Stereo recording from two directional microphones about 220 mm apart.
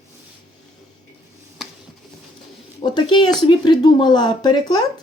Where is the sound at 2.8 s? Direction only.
20° left (ahead or behind).